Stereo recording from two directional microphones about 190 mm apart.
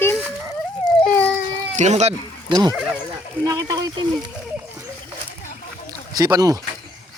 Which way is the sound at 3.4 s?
20° right (ahead or behind).